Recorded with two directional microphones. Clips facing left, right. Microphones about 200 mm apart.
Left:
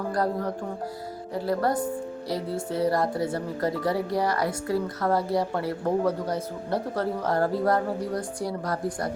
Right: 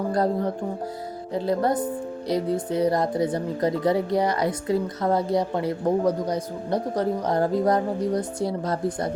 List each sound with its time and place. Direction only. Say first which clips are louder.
0.1 s speech: right 3 dB; 25° right (ahead or behind)